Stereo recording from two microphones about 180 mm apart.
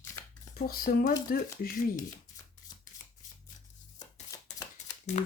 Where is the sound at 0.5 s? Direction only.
55° left (ahead or behind).